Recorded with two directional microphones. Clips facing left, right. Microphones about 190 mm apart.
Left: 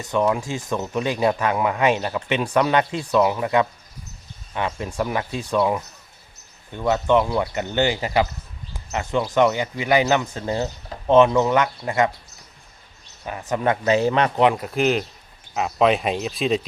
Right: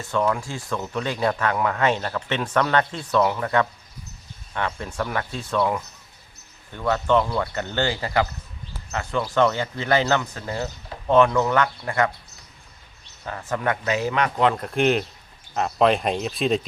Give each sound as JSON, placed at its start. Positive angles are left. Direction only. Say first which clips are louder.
{"t": 0.0, "sound": "speech", "louder": "left 2 dB", "side_deg": 20}
{"t": 13.2, "sound": "speech", "louder": "left 3 dB", "side_deg": 15}
{"t": 14.4, "sound": "speech", "louder": "right 1 dB", "side_deg": 10}